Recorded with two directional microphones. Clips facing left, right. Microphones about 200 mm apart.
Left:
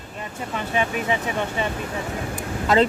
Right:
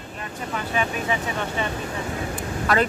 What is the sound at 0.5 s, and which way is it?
Speech, 20° left (ahead or behind).